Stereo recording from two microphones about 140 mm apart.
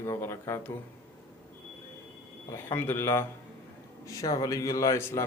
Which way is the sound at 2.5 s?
20° left (ahead or behind).